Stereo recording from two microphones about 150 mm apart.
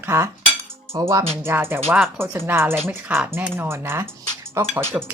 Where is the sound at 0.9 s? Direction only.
20° right (ahead or behind).